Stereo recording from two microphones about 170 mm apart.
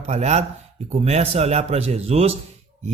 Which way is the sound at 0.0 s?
40° right (ahead or behind).